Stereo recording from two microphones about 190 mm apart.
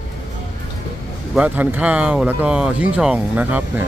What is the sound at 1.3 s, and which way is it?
Speech, 10° right (ahead or behind).